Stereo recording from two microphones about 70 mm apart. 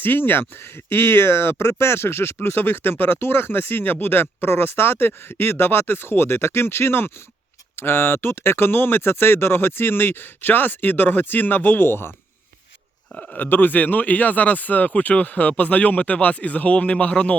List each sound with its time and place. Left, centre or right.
0.0 s speech: left
13.1 s speech: centre
13.4 s speech: left